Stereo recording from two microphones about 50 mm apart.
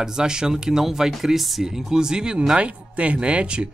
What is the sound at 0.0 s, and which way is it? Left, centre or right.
Speech, centre.